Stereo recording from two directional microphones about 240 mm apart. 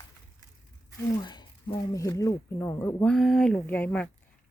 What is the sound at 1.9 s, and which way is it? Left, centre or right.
Speech, centre.